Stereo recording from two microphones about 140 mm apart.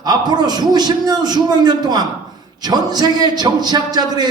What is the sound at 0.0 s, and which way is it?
A man's voice, 30° right (ahead or behind).